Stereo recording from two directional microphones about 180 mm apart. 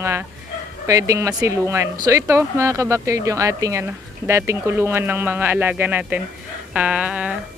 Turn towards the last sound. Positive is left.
turn(degrees=-5)  # may be behind; listen again after turning